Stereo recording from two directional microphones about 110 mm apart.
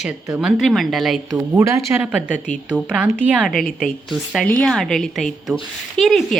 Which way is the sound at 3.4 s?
Centre (ahead or behind).